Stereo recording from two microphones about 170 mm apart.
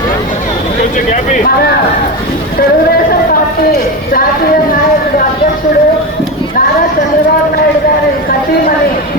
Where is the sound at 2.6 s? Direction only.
65° left (ahead or behind).